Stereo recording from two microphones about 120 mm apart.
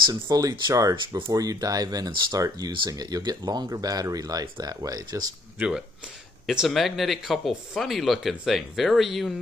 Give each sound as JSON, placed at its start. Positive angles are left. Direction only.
{"t": 0.0, "sound": "speech", "side_deg": -30}
{"t": 0.9, "sound": "speech", "side_deg": -40}
{"t": 1.3, "sound": "speech", "side_deg": -30}
{"t": 5.6, "sound": "speech", "side_deg": -5}